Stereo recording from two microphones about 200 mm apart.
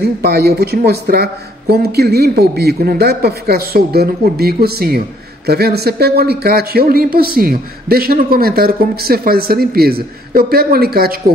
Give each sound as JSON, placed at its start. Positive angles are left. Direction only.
{"t": 0.0, "sound": "a man's voice", "side_deg": -55}